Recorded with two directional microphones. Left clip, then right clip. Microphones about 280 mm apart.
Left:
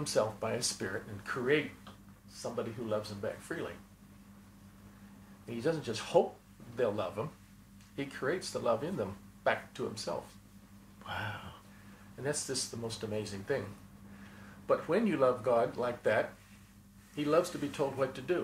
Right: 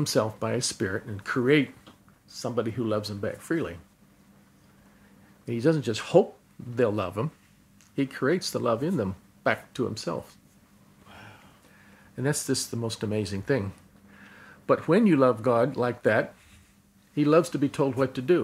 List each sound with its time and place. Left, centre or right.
0.0 s speech: right
5.5 s speech: right
12.2 s speech: right
14.7 s speech: right